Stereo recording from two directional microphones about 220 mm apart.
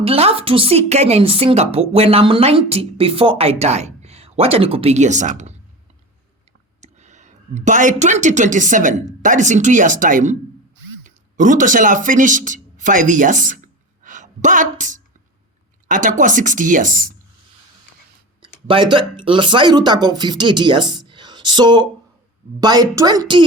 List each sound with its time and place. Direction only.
0.0 s a woman's voice: 25° right (ahead or behind)
6.8 s speech: 30° right (ahead or behind)
14.0 s a sound: 35° right (ahead or behind)
15.9 s a woman's voice: 35° right (ahead or behind)
18.7 s a woman's voice: 20° right (ahead or behind)